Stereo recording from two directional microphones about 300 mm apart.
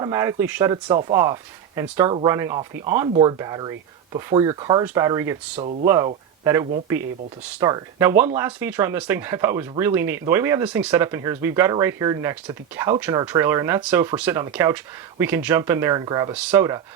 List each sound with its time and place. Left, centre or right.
0.0 s speech: centre
5.5 s speech: right
5.8 s speech: centre